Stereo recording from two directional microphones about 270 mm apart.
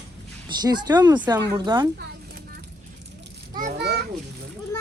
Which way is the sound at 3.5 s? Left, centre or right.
Right.